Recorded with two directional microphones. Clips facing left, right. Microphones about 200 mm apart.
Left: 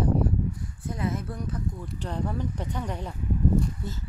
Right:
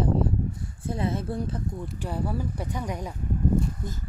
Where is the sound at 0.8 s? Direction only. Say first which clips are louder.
Right 2 dB; 30° right (ahead or behind).